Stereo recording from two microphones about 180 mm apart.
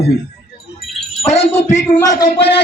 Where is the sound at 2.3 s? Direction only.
70° left (ahead or behind).